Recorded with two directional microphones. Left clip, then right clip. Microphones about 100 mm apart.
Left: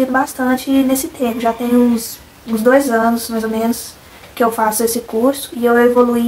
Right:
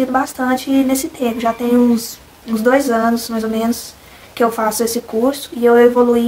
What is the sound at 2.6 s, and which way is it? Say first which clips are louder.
Speech: left 2 dB; 20° right (ahead or behind).